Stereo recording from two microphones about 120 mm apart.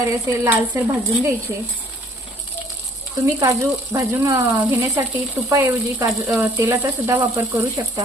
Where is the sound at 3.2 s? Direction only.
25° right (ahead or behind).